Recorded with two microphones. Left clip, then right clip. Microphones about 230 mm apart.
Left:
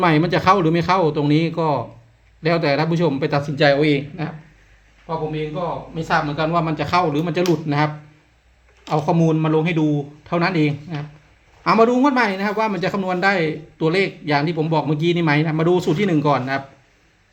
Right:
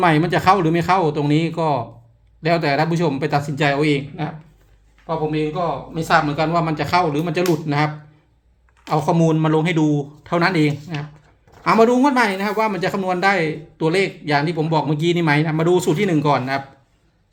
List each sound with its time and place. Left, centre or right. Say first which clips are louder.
0.0 s a man's voice: right 1 dB; centre
5.1 s a man's voice: right 3 dB; centre
8.9 s a man's voice: right 1 dB; centre